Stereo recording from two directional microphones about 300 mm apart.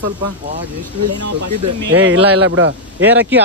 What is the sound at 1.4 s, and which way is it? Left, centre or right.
Speech, right.